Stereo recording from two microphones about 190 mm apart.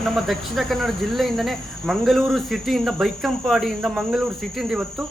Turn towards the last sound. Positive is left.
turn(degrees=0)  # may be behind; listen again after turning